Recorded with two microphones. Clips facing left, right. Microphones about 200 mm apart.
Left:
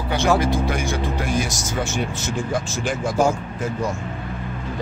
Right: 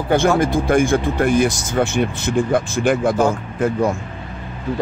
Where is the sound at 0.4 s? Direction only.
50° right (ahead or behind).